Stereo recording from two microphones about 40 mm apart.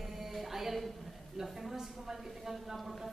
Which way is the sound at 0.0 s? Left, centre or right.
Centre.